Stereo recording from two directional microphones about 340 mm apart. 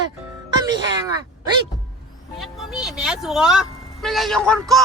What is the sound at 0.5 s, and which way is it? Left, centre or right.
Music, centre.